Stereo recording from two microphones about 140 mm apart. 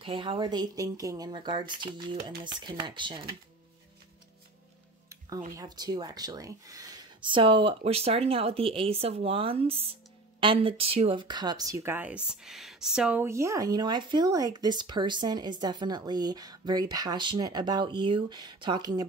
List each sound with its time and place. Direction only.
0.0 s speech: 40° right (ahead or behind)
5.6 s speech: 30° right (ahead or behind)
12.3 s speech: centre (ahead or behind); by 19.0 s 30° right (ahead or behind)